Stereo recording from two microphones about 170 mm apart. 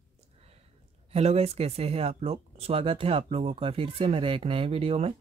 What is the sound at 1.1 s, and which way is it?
Speech, 35° right (ahead or behind).